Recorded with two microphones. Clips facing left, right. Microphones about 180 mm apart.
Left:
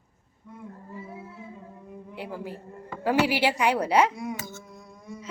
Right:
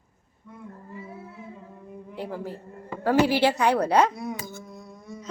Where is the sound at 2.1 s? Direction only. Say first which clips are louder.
Right 3 dB; 10° left (ahead or behind).